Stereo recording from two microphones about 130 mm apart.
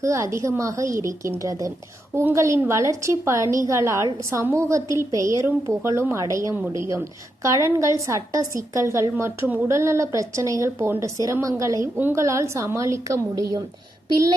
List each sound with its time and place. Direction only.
0.0 s a woman's voice: 25° right (ahead or behind)